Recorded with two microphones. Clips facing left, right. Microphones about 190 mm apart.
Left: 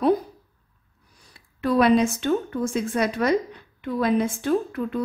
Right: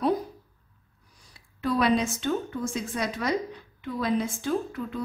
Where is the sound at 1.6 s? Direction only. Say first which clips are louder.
Left 6 dB; 60° left (ahead or behind).